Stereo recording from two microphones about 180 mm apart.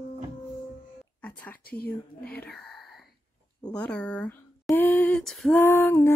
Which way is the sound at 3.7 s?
5° left (ahead or behind).